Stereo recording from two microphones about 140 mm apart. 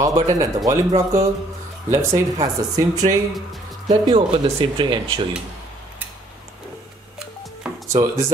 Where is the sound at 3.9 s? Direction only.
35° right (ahead or behind).